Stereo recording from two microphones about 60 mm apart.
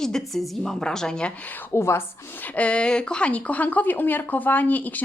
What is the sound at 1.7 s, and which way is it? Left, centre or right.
Speech, left.